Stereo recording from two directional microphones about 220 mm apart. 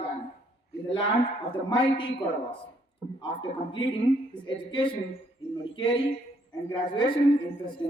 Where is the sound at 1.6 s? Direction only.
20° left (ahead or behind).